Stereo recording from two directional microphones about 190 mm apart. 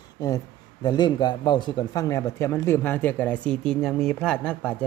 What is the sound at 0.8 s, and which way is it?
Speech, 20° left (ahead or behind).